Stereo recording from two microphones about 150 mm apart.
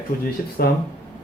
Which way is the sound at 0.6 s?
90° left.